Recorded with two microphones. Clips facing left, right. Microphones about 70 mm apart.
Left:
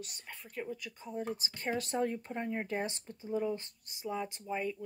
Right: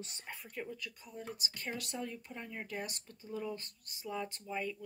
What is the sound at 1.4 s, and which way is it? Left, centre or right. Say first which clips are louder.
Speech: left 6 dB; left.